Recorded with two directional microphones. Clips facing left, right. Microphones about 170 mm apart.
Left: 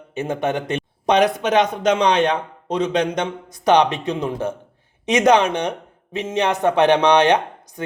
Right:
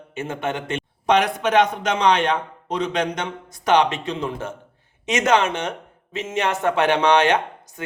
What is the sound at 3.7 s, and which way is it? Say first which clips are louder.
A man's voice: left 3 dB; 15° left (ahead or behind).